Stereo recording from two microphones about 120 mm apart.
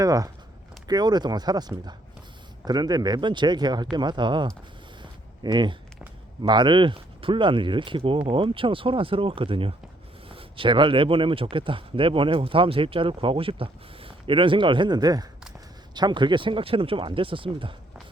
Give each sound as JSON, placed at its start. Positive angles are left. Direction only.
{"t": 0.0, "sound": "speech", "side_deg": -30}